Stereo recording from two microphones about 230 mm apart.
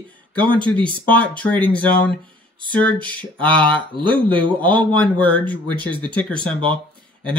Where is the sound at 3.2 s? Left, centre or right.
Centre.